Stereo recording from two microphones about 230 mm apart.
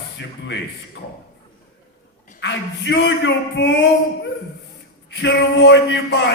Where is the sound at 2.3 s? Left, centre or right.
Left.